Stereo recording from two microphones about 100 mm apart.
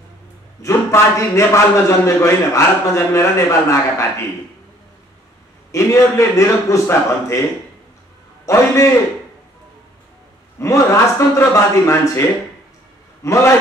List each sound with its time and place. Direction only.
0.6 s a man's voice: 30° left (ahead or behind)
5.7 s a man's voice: 30° left (ahead or behind)
8.5 s a man's voice: 30° left (ahead or behind)
10.6 s a man's voice: 30° left (ahead or behind)